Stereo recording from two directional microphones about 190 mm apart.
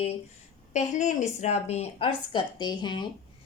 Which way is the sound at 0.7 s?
40° left (ahead or behind).